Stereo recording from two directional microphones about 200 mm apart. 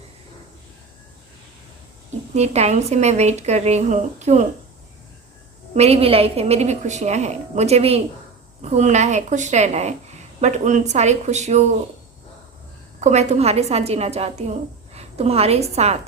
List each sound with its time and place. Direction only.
2.3 s a woman's voice: 35° right (ahead or behind)
5.7 s a woman's voice: 30° right (ahead or behind)
13.0 s a woman's voice: 35° right (ahead or behind)